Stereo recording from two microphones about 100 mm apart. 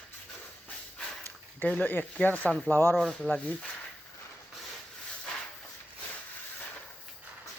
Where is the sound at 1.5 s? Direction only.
15° left (ahead or behind).